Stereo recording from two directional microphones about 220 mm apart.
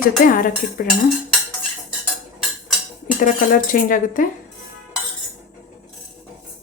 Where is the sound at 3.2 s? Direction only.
40° left (ahead or behind).